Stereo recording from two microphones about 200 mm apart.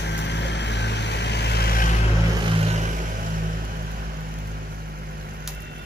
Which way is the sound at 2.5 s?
35° right (ahead or behind).